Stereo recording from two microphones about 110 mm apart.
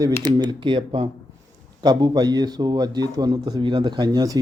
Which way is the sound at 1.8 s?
40° right (ahead or behind).